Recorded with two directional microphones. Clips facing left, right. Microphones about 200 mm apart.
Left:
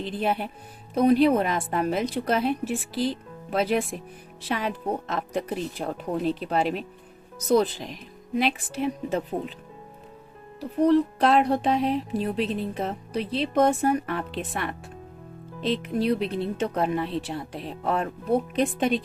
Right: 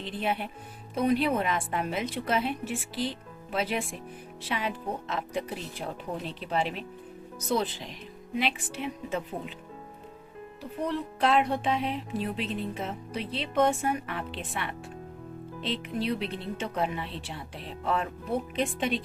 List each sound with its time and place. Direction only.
0.0 s speech: 40° left (ahead or behind)
10.6 s speech: 40° left (ahead or behind)